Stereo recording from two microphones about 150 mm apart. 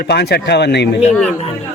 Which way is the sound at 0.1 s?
90° left.